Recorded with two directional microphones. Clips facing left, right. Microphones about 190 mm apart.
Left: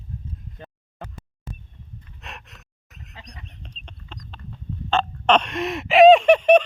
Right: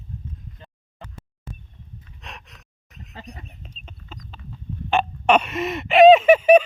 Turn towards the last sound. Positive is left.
turn(degrees=-5)  # may be behind; listen again after turning